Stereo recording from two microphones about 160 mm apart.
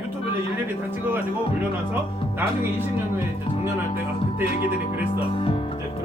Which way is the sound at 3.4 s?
35° left (ahead or behind).